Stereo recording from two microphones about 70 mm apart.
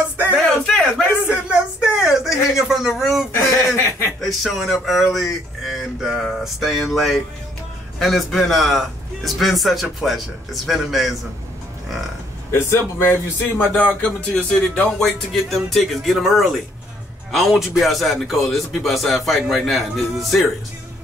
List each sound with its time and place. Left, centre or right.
0.3 s music: centre
1.3 s a sound: centre
3.3 s speech: left
4.2 s a man's voice: centre
12.4 s speech: left
13.7 s speech: left
15.0 s a man's voice: centre